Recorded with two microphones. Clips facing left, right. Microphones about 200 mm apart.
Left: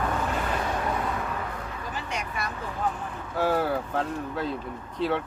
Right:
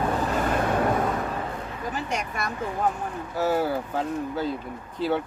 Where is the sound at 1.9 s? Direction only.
45° right (ahead or behind).